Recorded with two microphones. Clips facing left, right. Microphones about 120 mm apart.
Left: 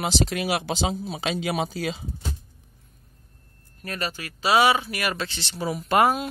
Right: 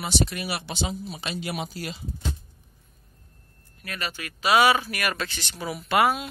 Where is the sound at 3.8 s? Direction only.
35° left (ahead or behind).